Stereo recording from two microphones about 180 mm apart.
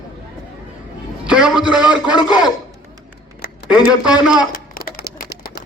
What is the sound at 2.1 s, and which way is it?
Speech, 20° left (ahead or behind).